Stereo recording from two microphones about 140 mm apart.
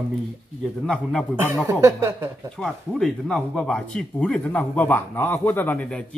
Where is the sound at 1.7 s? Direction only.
20° right (ahead or behind).